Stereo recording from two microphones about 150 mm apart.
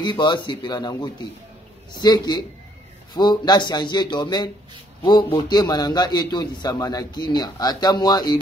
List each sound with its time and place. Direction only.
0.0 s a man's voice: 30° left (ahead or behind)